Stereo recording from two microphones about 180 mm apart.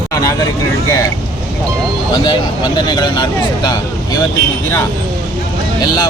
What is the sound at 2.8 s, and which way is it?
Speech, 25° left (ahead or behind).